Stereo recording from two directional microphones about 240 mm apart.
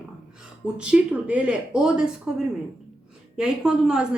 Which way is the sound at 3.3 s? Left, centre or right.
Centre.